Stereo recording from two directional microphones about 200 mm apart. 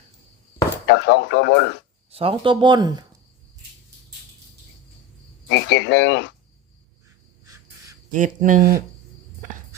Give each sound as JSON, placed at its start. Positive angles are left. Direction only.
{"t": 0.9, "sound": "frog", "side_deg": 65}
{"t": 2.0, "sound": "speech", "side_deg": -30}
{"t": 5.5, "sound": "frog", "side_deg": 60}
{"t": 8.1, "sound": "speech", "side_deg": -40}